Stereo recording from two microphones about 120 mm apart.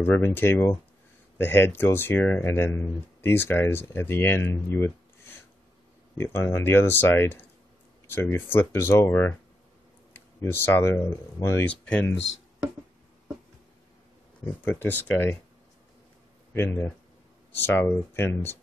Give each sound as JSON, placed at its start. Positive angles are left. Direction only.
{"t": 0.0, "sound": "speech", "side_deg": 15}
{"t": 6.1, "sound": "speech", "side_deg": 20}
{"t": 14.6, "sound": "speech", "side_deg": 15}
{"t": 16.5, "sound": "speech", "side_deg": 20}